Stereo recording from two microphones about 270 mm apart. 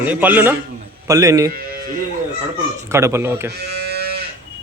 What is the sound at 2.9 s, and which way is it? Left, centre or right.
Speech, centre.